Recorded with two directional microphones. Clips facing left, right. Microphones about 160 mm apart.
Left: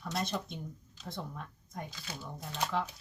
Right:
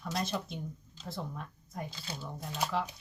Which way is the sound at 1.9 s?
30° right (ahead or behind).